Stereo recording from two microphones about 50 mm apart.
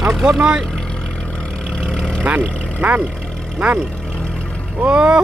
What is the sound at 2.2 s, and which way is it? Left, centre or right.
Speech, right.